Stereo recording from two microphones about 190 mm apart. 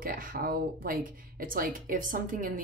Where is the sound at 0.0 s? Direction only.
50° right (ahead or behind).